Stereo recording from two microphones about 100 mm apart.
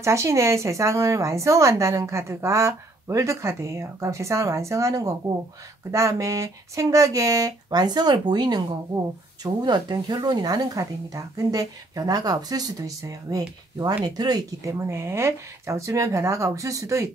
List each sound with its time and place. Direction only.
0.0 s speech: 30° right (ahead or behind)